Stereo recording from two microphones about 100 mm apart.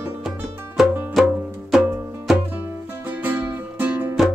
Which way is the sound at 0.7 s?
Centre (ahead or behind).